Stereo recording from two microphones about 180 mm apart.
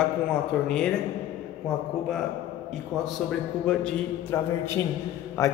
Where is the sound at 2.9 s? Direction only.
Centre (ahead or behind).